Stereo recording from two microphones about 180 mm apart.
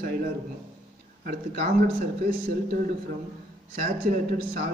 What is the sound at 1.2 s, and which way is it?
Speech, 50° right (ahead or behind).